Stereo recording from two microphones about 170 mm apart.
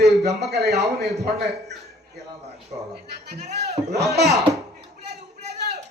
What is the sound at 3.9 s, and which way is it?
Speech, 80° right.